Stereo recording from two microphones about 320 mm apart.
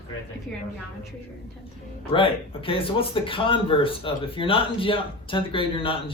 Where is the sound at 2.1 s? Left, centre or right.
Centre.